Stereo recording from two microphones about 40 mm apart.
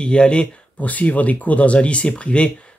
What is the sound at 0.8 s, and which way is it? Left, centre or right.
Speech, left.